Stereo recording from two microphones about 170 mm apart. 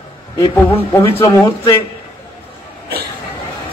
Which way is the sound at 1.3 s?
20° left (ahead or behind).